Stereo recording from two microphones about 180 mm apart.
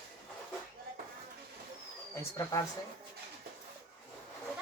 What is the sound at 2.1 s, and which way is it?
Speech, 15° left (ahead or behind).